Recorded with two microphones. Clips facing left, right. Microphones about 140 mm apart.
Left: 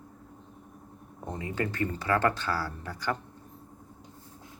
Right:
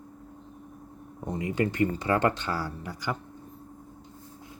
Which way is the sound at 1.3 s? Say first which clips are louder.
Right 5 dB; 15° right (ahead or behind).